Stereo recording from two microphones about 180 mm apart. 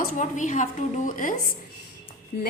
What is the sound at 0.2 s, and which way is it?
A woman's voice, 45° left (ahead or behind).